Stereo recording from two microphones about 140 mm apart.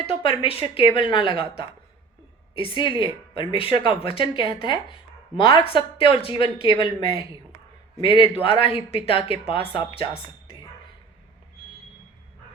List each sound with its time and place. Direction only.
0.0 s speech: 40° left (ahead or behind)
8.0 s speech: 40° left (ahead or behind)